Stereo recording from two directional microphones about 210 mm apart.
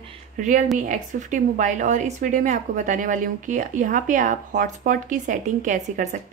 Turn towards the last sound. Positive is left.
turn(degrees=-35)  # may be behind; listen again after turning